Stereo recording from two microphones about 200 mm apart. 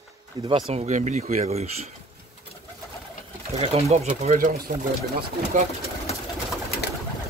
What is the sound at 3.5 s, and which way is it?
Speech, 30° right (ahead or behind).